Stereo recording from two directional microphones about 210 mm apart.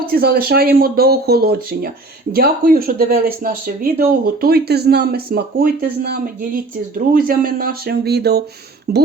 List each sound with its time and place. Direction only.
0.0 s speech: 45° right (ahead or behind)